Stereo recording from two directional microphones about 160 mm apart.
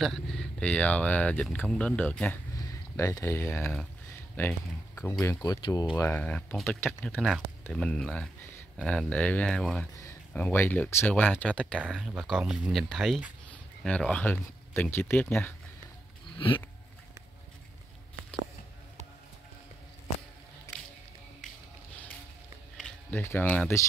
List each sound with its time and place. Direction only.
0.0 s speech: centre (ahead or behind)
2.5 s speech: 20° left (ahead or behind); by 9.8 s 5° left (ahead or behind)
9.9 s a sound: 20° left (ahead or behind)
10.4 s speech: 10° left (ahead or behind)
11.8 s speech: 5° right (ahead or behind)
16.3 s a sound: 30° left (ahead or behind)
20.7 s squish: 20° left (ahead or behind)
23.1 s speech: 15° left (ahead or behind)